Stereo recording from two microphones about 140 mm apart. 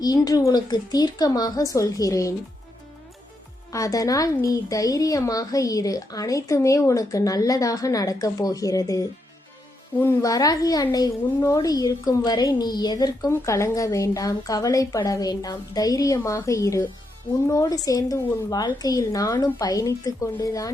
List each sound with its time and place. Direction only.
0.0 s a woman's voice: 25° left (ahead or behind)
3.7 s a woman's voice: 25° left (ahead or behind)